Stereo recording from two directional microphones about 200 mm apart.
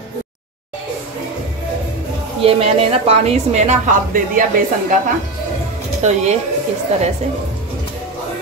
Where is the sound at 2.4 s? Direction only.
30° right (ahead or behind).